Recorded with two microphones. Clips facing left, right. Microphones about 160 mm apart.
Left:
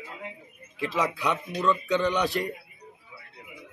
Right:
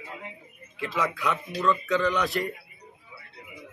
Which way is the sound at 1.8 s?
30° left (ahead or behind).